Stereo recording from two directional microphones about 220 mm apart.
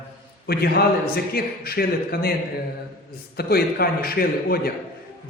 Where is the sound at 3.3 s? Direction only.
45° left (ahead or behind).